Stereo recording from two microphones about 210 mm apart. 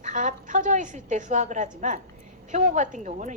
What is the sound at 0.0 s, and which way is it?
A woman's voice, 35° right (ahead or behind).